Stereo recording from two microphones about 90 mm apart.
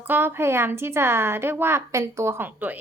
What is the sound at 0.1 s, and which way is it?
A woman's voice, 25° right (ahead or behind).